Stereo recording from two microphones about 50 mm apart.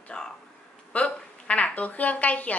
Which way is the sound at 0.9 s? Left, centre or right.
Left.